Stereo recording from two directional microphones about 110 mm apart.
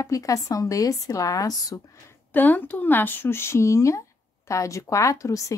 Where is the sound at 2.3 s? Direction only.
15° left (ahead or behind).